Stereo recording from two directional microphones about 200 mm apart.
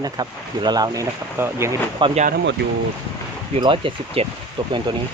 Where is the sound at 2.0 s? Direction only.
25° right (ahead or behind).